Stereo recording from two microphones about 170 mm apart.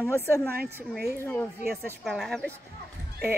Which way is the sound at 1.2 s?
10° left (ahead or behind).